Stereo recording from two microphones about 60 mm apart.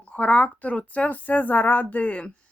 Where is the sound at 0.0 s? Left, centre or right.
Centre.